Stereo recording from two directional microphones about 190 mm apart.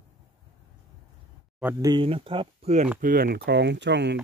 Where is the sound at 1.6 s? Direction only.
15° right (ahead or behind); by 2.9 s 35° right (ahead or behind).